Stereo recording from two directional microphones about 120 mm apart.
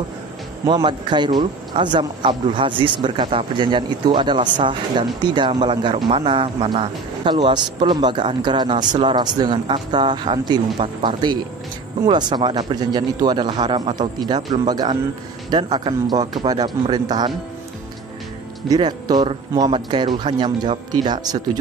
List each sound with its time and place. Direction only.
0.7 s a man's voice: 40° right (ahead or behind)
18.7 s a man's voice: 35° right (ahead or behind)